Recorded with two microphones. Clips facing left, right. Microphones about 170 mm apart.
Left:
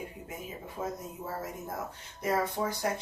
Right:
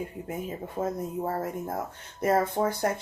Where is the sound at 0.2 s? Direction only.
55° right (ahead or behind).